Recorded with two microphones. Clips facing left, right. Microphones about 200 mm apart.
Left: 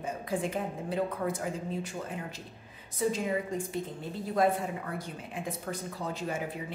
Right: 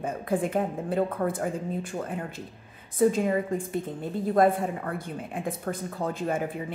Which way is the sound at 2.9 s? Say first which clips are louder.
Right 7 dB; 55° right (ahead or behind).